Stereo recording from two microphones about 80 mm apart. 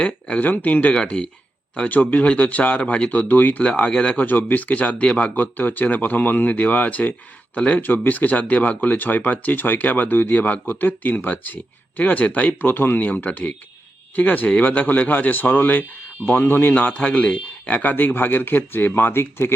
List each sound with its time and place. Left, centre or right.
0.0 s speech: centre